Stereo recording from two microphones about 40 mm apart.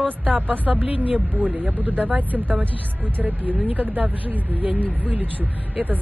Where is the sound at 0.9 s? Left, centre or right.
Right.